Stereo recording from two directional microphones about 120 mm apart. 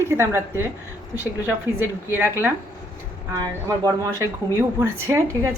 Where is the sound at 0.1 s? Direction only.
20° right (ahead or behind).